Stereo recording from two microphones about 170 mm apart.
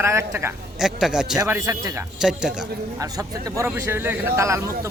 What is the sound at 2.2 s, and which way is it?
Speech, 5° right (ahead or behind).